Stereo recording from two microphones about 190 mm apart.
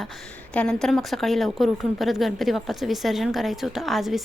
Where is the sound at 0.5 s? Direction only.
5° left (ahead or behind).